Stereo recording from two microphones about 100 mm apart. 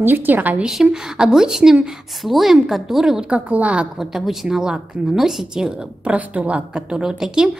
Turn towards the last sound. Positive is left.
turn(degrees=-5)  # may be behind; listen again after turning